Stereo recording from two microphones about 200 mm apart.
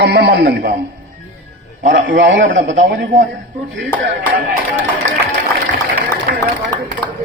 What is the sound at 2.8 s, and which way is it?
Speech, 45° right (ahead or behind).